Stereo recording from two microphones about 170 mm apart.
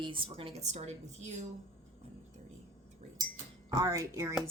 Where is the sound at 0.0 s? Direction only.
30° right (ahead or behind).